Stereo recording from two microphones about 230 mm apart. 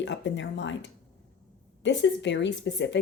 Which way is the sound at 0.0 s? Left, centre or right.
Left.